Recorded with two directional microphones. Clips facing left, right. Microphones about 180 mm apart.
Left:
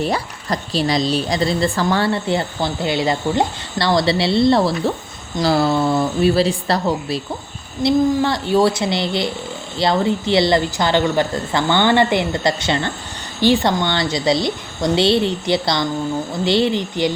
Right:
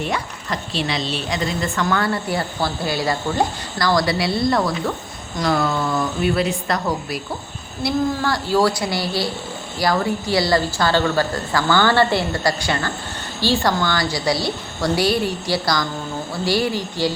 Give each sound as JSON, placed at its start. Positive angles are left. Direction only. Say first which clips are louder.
{"t": 0.0, "sound": "speech", "louder": "left 4 dB", "side_deg": 35}